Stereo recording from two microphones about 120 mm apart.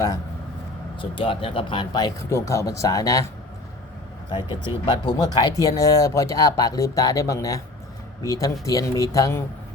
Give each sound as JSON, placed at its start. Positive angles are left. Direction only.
{"t": 0.9, "sound": "speech", "side_deg": 45}
{"t": 4.3, "sound": "speech", "side_deg": 40}